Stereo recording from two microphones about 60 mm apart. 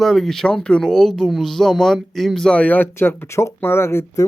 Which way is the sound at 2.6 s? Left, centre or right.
Left.